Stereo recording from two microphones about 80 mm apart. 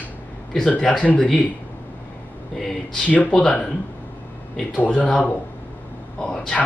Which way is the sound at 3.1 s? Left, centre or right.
Centre.